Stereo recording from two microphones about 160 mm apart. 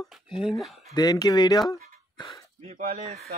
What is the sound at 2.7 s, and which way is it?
Speech, 65° right (ahead or behind).